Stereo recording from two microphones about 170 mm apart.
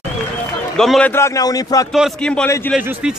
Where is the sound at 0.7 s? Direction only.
5° left (ahead or behind).